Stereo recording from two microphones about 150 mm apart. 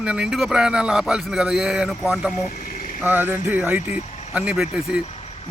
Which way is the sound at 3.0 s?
10° right (ahead or behind).